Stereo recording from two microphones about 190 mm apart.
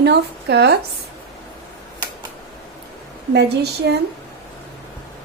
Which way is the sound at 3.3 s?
60° right (ahead or behind).